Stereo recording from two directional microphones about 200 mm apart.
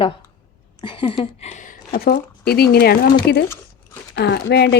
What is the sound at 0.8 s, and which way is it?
A woman's voice, 25° left (ahead or behind).